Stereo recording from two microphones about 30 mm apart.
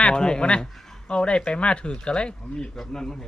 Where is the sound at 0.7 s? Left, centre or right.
Centre.